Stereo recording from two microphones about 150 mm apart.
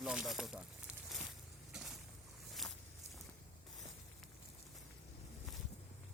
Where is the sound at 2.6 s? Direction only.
Centre (ahead or behind).